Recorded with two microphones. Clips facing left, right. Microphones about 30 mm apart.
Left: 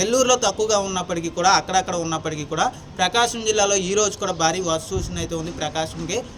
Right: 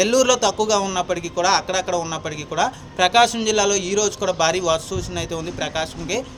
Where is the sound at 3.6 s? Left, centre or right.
Right.